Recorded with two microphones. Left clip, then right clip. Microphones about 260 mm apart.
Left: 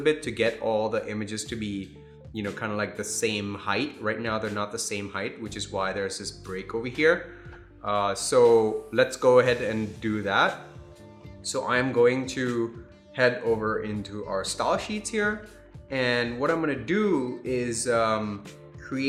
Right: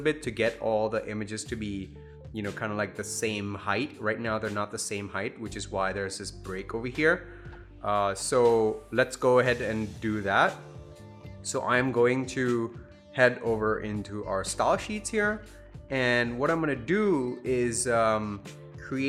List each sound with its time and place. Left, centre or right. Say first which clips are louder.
0.0 s speech: left 3 dB; right
18.8 s music: left 1 dB; right